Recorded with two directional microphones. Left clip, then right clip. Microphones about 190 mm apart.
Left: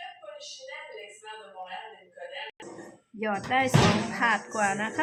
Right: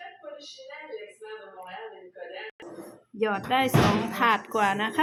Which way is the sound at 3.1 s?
20° right (ahead or behind).